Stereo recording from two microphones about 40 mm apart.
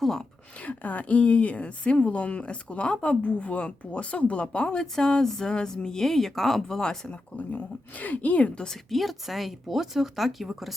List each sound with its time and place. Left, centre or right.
0.0 s speech: centre
0.6 s speech: left; by 6.7 s centre
6.7 s speech: centre
7.1 s speech: left
8.5 s speech: centre
8.9 s speech: centre